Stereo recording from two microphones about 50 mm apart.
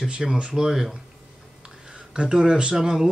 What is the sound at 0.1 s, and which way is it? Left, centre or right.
Speech, centre.